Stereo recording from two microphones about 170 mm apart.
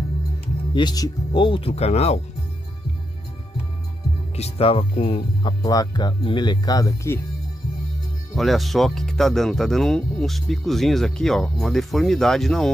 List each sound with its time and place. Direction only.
0.7 s speech: 25° left (ahead or behind)
4.4 s speech: 35° left (ahead or behind)
5.6 s speech: 20° left (ahead or behind)
8.4 s speech: centre (ahead or behind)